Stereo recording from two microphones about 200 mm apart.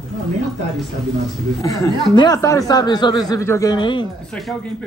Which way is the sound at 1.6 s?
15° left (ahead or behind).